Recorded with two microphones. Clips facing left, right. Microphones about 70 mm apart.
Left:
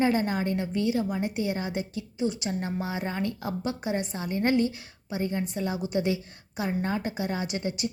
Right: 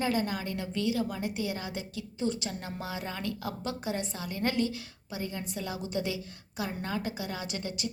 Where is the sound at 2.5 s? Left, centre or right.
Left.